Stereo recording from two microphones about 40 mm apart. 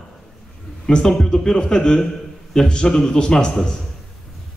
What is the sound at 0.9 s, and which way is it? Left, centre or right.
A man's voice, centre.